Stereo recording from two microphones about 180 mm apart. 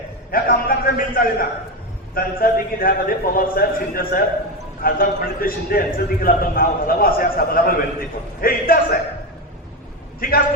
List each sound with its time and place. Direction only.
0.3 s a man's voice: 55° left (ahead or behind)
10.2 s a man's voice: 55° left (ahead or behind)